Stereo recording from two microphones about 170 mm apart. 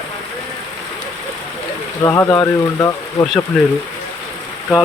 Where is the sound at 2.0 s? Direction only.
20° left (ahead or behind).